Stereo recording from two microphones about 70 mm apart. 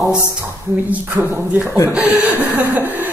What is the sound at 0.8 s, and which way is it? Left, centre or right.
Speech, right.